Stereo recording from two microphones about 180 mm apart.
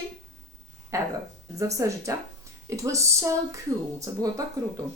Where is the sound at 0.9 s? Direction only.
15° right (ahead or behind).